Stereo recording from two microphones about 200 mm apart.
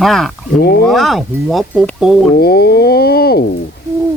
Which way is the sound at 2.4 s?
50° left (ahead or behind).